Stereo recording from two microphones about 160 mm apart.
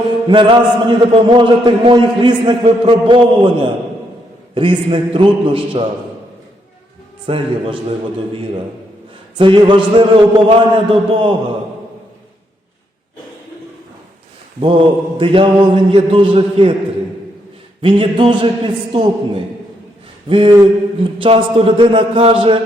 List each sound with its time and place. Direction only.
0.3 s a man's voice: 30° right (ahead or behind)
4.5 s a man's voice: 30° right (ahead or behind)
7.3 s a man's voice: 35° right (ahead or behind)
9.4 s a man's voice: 30° right (ahead or behind)
14.6 s a man's voice: 30° right (ahead or behind)
17.8 s a man's voice: 35° right (ahead or behind)
20.2 s a man's voice: 35° right (ahead or behind)